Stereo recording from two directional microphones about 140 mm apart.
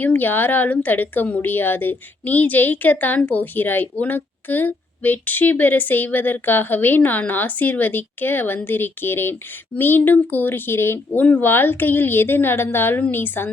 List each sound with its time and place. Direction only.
0.0 s a woman's voice: 15° left (ahead or behind)